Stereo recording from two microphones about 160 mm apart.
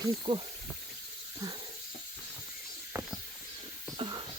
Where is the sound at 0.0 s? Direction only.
30° right (ahead or behind).